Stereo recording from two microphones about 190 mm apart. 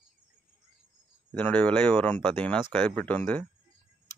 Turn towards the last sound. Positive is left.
turn(degrees=10)  # may be behind; listen again after turning